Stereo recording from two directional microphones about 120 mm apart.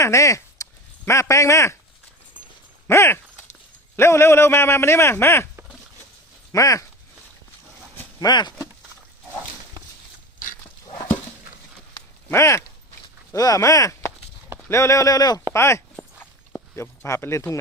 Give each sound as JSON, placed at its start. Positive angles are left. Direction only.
{"t": 0.0, "sound": "speech", "side_deg": 25}
{"t": 2.8, "sound": "a man's voice", "side_deg": 20}
{"t": 6.5, "sound": "a man's voice", "side_deg": 30}
{"t": 8.2, "sound": "speech", "side_deg": 35}
{"t": 12.3, "sound": "a man's voice", "side_deg": 25}
{"t": 13.3, "sound": "chop", "side_deg": 30}
{"t": 14.7, "sound": "a man's voice", "side_deg": 25}